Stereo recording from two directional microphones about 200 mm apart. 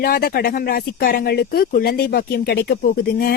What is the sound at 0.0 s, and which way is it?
Speech, 50° left (ahead or behind).